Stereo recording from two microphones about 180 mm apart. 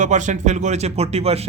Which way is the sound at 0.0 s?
40° right (ahead or behind).